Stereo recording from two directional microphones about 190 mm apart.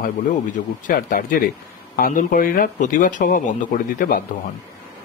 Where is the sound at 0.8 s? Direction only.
45° left (ahead or behind).